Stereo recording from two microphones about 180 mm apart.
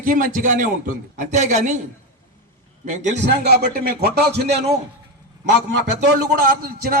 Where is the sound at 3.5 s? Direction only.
60° right (ahead or behind).